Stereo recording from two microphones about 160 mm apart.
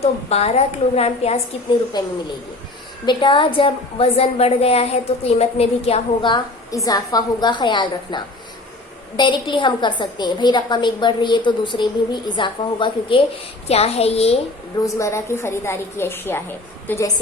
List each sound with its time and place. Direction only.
0.0 s a woman's voice: 40° left (ahead or behind)
2.0 s a woman's voice: 25° left (ahead or behind)
6.8 s a woman's voice: 25° left (ahead or behind); by 14.3 s 40° left (ahead or behind)
14.8 s a woman's voice: 20° left (ahead or behind)